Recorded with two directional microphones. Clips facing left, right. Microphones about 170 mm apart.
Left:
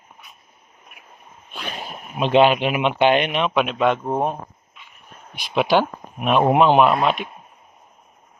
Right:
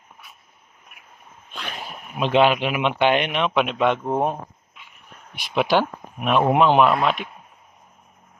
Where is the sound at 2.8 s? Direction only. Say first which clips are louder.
Left 2 dB; 15° left (ahead or behind).